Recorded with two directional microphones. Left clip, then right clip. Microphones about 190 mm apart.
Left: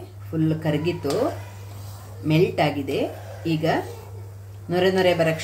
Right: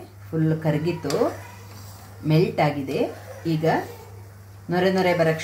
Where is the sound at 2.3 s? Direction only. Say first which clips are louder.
Left 1 dB; 10° right (ahead or behind).